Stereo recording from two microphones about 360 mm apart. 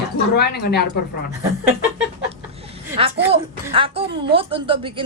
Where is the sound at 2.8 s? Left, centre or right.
Centre.